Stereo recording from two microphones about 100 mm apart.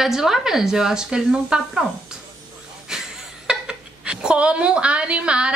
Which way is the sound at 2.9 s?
5° right (ahead or behind).